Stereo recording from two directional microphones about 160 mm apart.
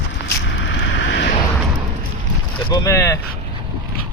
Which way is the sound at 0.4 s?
90° left.